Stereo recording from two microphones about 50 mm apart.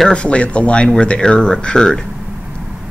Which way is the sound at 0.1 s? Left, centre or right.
Left.